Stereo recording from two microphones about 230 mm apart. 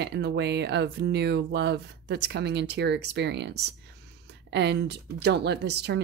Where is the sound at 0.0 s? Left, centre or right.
Right.